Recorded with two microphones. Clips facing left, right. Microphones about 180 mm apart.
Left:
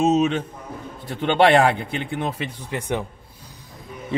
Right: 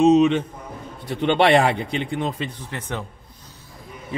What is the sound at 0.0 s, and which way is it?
A man's voice, centre (ahead or behind).